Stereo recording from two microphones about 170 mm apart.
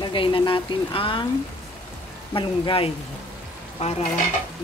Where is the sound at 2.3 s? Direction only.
30° left (ahead or behind).